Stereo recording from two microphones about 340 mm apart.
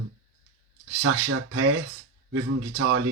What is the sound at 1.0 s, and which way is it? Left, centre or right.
A man's voice, right.